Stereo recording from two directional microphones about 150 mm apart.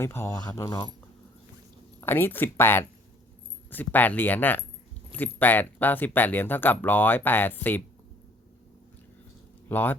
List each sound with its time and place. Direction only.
0.0 s speech: 15° left (ahead or behind)
2.0 s speech: 15° left (ahead or behind)
9.6 s speech: 15° left (ahead or behind)